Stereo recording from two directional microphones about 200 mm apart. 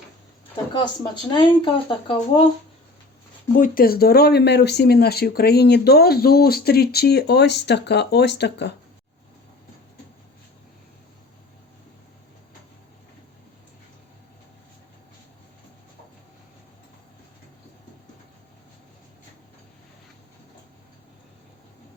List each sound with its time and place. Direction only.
0.7 s speech: 25° left (ahead or behind)
3.6 s speech: 45° left (ahead or behind)